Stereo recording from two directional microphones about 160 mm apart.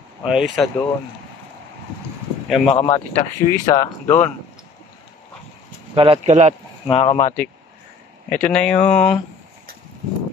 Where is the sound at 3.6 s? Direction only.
20° left (ahead or behind).